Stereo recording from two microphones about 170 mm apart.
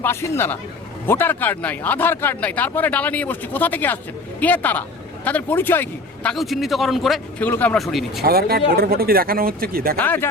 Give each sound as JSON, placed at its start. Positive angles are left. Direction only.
{"t": 0.0, "sound": "speech", "side_deg": 15}
{"t": 6.3, "sound": "a man's voice", "side_deg": 0}
{"t": 8.2, "sound": "speech", "side_deg": -65}
{"t": 10.0, "sound": "speech", "side_deg": 10}